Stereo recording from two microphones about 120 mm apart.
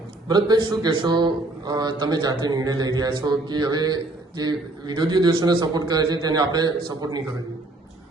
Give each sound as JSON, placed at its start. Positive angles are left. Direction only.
{"t": 0.3, "sound": "a man's voice", "side_deg": -35}